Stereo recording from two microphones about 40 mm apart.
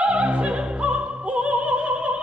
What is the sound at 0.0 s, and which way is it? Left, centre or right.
Opera, right.